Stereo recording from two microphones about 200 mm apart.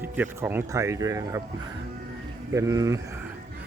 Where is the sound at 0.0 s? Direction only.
10° right (ahead or behind).